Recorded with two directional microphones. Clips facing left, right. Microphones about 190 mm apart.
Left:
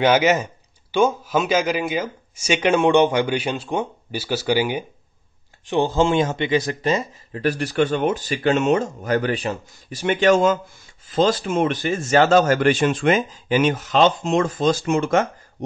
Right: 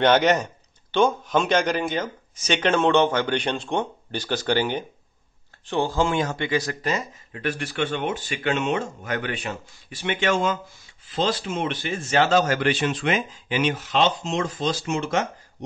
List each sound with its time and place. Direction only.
0.0 s speech: 5° left (ahead or behind)
5.7 s a man's voice: 20° left (ahead or behind); by 15.2 s 50° left (ahead or behind)